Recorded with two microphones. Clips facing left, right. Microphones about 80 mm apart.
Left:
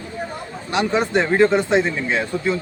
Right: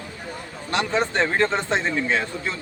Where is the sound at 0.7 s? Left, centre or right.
Centre.